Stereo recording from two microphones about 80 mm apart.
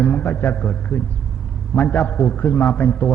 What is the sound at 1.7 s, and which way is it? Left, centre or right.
A man's voice, centre.